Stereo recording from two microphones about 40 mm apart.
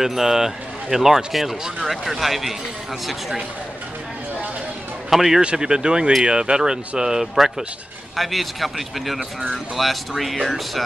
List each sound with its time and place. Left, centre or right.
0.0 s speech: centre
5.1 s speech: centre
5.4 s speech: right
8.2 s speech: centre